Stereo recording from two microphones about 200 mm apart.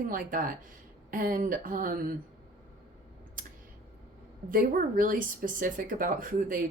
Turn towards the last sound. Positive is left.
turn(degrees=-45)  # may be behind; listen again after turning